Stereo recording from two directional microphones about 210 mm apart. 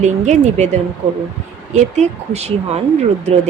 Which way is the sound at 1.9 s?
30° right (ahead or behind).